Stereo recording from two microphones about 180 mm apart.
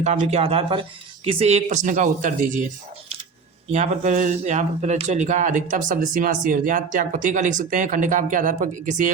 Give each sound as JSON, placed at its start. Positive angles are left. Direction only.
{"t": 0.0, "sound": "speech", "side_deg": -40}
{"t": 3.7, "sound": "a man's voice", "side_deg": -40}